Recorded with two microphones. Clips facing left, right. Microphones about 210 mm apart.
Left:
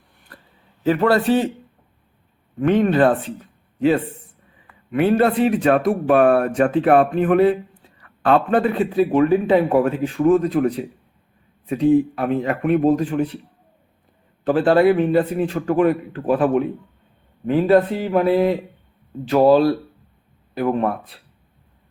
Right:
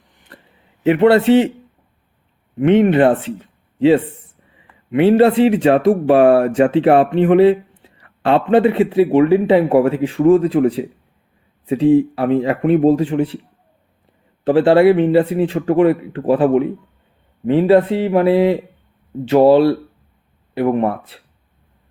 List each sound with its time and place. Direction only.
0.9 s speech: 25° right (ahead or behind)
2.6 s speech: 25° right (ahead or behind)
3.3 s a sound: 25° right (ahead or behind)
4.6 s speech: 25° right (ahead or behind)
14.4 s speech: 25° right (ahead or behind)